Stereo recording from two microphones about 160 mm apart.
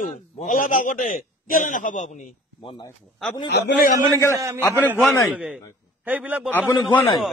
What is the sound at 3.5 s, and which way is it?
Speech, 90° left.